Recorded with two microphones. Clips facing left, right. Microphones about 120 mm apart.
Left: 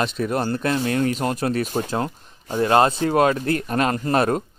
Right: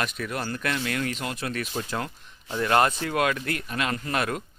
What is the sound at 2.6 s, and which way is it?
Speech, 30° left (ahead or behind).